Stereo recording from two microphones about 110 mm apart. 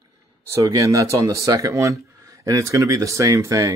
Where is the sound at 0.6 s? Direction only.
30° right (ahead or behind).